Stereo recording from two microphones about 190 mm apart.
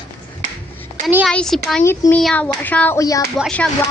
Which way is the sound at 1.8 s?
15° left (ahead or behind).